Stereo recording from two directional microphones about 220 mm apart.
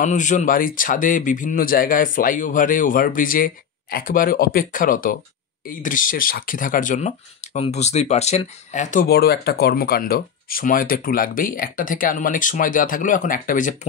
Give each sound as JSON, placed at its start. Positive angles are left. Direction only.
{"t": 0.0, "sound": "speech", "side_deg": 35}